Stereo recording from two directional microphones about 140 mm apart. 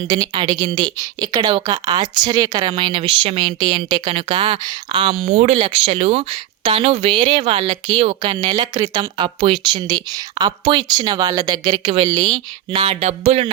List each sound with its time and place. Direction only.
0.1 s speech: 30° right (ahead or behind)
5.3 s speech: 55° right (ahead or behind)
5.5 s speech: 40° right (ahead or behind)